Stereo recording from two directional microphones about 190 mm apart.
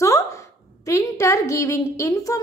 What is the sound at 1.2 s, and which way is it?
Speech, 15° left (ahead or behind).